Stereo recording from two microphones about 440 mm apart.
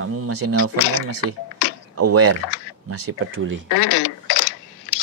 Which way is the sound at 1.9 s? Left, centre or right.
Right.